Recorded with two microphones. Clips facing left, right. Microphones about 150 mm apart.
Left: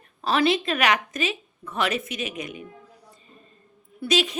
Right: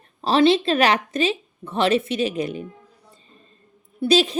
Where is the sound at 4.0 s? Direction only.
30° right (ahead or behind).